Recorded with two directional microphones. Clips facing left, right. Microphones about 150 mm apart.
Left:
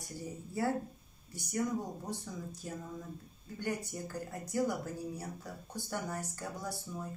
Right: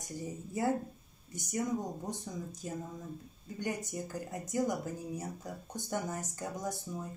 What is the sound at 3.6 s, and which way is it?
Speech, 20° right (ahead or behind).